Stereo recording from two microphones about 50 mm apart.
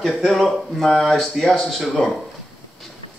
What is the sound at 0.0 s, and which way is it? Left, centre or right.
Speech, centre.